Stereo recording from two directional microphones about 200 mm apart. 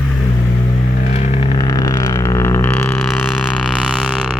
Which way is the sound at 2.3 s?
15° left (ahead or behind).